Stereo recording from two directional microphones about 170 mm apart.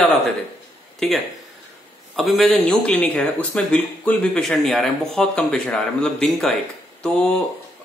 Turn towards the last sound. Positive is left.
turn(degrees=5)  # may be behind; listen again after turning